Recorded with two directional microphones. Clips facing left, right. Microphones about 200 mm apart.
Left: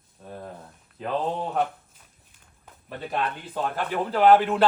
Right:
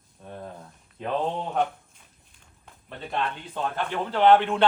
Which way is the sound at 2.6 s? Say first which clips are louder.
Left 3 dB; 5° left (ahead or behind).